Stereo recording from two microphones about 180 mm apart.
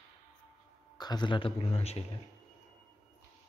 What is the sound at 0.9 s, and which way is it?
A man's voice, 25° left (ahead or behind).